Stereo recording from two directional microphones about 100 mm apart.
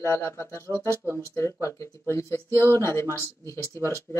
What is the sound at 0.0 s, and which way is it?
Speech, 25° left (ahead or behind).